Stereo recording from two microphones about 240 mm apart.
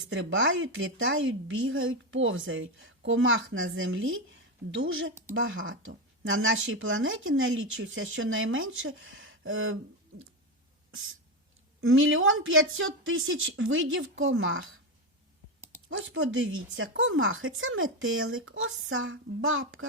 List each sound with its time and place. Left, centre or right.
0.1 s speech: right
11.8 s speech: right
15.9 s speech: right